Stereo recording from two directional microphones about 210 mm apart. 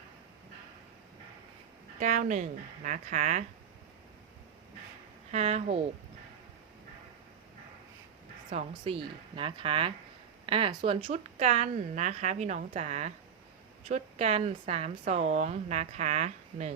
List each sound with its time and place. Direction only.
2.0 s speech: 40° right (ahead or behind)
5.3 s speech: 30° right (ahead or behind)
8.8 s speech: 25° right (ahead or behind)